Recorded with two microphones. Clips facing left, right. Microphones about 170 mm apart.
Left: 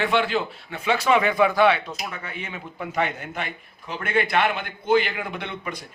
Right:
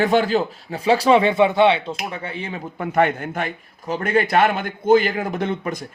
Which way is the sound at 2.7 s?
50° right (ahead or behind).